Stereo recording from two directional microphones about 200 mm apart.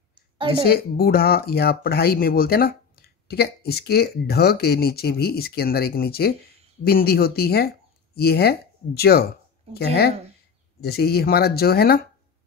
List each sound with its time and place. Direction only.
0.7 s speech: 50° left (ahead or behind)